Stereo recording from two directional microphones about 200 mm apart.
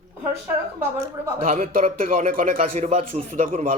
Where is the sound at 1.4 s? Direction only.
35° right (ahead or behind).